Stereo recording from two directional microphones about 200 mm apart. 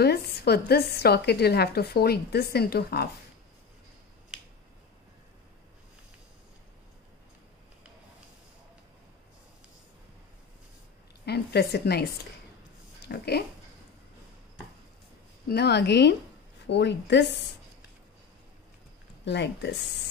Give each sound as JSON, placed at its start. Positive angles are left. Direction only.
{"t": 0.0, "sound": "speech", "side_deg": 50}
{"t": 11.2, "sound": "speech", "side_deg": 55}
{"t": 15.4, "sound": "a woman's voice", "side_deg": 55}
{"t": 19.2, "sound": "a woman's voice", "side_deg": 60}